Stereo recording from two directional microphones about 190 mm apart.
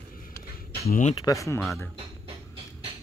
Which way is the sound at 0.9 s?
40° left (ahead or behind).